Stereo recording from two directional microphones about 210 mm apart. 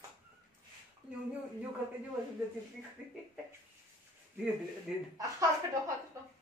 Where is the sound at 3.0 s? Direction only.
5° right (ahead or behind).